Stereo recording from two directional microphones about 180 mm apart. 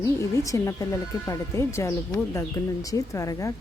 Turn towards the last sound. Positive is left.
turn(degrees=20)  # may be behind; listen again after turning